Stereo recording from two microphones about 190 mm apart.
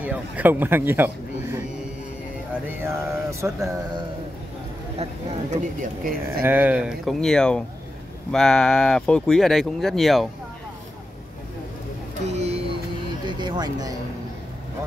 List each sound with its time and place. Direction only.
0.0 s speech: 10° right (ahead or behind)
2.8 s mantra: 15° right (ahead or behind)
5.5 s speech: 45° right (ahead or behind)
6.4 s speech: 10° right (ahead or behind)
12.3 s a sound: 35° right (ahead or behind)
13.4 s a sound: 20° right (ahead or behind)